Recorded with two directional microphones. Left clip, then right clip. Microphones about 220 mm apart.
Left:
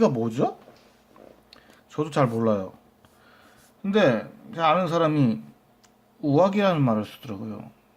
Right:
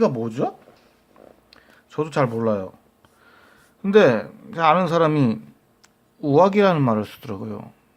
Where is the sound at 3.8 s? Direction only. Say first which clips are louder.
Right 6 dB; 30° right (ahead or behind).